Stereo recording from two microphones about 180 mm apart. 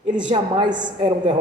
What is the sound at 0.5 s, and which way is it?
Speech, 25° right (ahead or behind).